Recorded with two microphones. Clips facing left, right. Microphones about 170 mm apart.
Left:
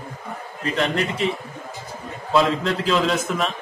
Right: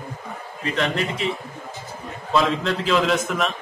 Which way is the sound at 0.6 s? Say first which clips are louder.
Left 1 dB; centre (ahead or behind).